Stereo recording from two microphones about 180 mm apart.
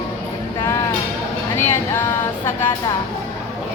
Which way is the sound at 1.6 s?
15° left (ahead or behind).